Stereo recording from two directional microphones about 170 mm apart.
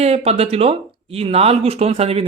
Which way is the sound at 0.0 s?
40° right (ahead or behind).